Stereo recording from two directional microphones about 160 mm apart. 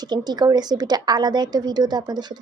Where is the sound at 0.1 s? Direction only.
25° right (ahead or behind).